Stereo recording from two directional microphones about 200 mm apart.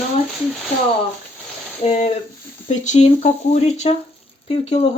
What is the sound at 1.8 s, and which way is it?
Speech, 35° left (ahead or behind).